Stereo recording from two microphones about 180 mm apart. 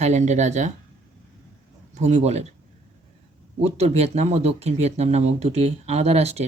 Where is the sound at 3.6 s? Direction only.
35° right (ahead or behind).